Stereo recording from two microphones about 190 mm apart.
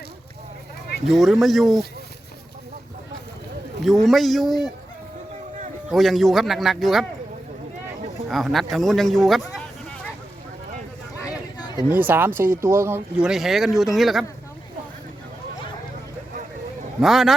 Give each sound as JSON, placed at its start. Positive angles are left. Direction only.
{"t": 1.0, "sound": "speech", "side_deg": 0}
{"t": 4.0, "sound": "speech", "side_deg": 0}
{"t": 5.9, "sound": "speech", "side_deg": 0}
{"t": 8.3, "sound": "speech", "side_deg": 0}
{"t": 11.3, "sound": "a sound", "side_deg": 20}
{"t": 11.9, "sound": "speech", "side_deg": -10}
{"t": 17.0, "sound": "speech", "side_deg": 0}